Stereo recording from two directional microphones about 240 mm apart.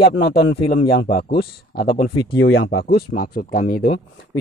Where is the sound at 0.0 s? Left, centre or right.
Left.